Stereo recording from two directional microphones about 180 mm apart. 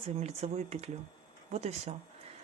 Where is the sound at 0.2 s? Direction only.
35° right (ahead or behind).